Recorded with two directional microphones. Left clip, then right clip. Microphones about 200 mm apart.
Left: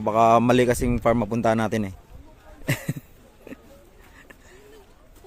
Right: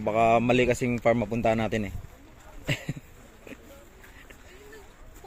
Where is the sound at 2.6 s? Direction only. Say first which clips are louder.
Left 3 dB; 30° left (ahead or behind).